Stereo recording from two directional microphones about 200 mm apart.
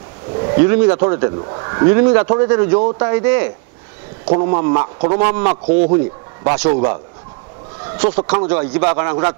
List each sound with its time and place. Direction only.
0.3 s a sound: 20° right (ahead or behind)
1.0 s speech: 10° right (ahead or behind)
1.4 s speech: 25° right (ahead or behind)
4.3 s speech: 20° right (ahead or behind)
8.0 s speech: 10° right (ahead or behind)